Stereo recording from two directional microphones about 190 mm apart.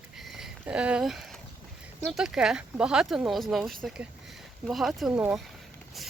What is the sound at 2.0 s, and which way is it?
Speech, centre (ahead or behind).